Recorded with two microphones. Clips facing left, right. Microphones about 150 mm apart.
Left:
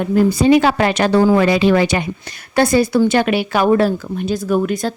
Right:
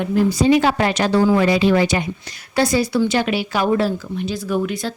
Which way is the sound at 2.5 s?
55° left (ahead or behind).